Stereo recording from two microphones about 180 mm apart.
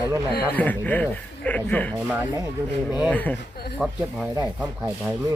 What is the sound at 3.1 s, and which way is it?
Speech, 10° left (ahead or behind).